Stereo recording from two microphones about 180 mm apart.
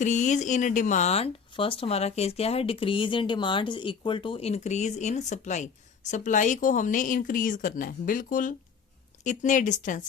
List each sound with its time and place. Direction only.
0.0 s speech: 40° left (ahead or behind)